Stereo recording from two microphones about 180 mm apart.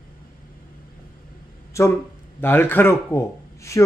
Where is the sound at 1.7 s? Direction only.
15° left (ahead or behind).